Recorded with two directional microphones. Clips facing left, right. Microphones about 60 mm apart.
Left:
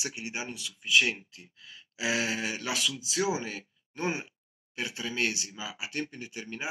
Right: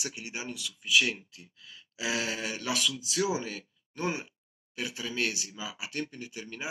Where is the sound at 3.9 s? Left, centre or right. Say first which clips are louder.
Left 1 dB; centre.